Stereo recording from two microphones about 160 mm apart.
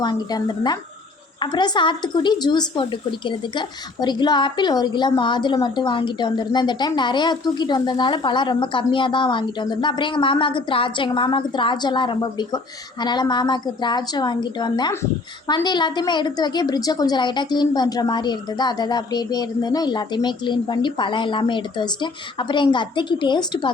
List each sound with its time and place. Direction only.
0.0 s a woman's voice: 25° left (ahead or behind)